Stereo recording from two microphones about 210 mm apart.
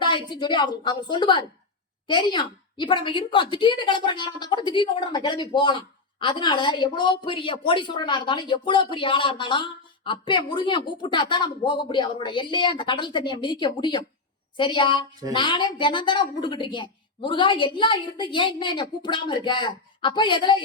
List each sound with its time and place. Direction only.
0.0 s a woman's voice: 20° left (ahead or behind)